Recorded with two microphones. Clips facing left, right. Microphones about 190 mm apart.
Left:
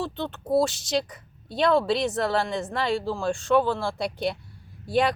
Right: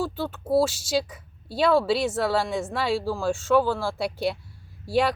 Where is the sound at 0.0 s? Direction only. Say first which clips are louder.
Right 2 dB; 5° right (ahead or behind).